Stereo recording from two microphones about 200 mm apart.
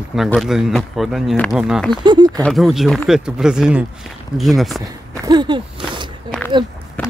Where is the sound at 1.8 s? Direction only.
20° right (ahead or behind).